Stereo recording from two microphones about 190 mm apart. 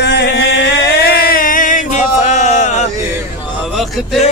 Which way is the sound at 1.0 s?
50° left (ahead or behind).